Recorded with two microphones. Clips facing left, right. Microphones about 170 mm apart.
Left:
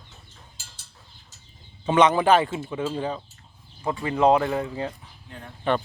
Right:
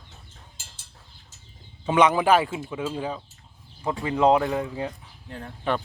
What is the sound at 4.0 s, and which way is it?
Speech, 15° right (ahead or behind).